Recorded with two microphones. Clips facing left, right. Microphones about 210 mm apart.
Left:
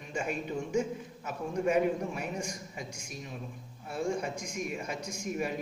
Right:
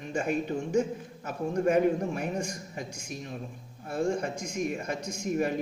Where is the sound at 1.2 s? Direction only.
50° right (ahead or behind).